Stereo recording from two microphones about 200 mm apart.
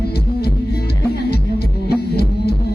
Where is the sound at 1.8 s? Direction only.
50° left (ahead or behind).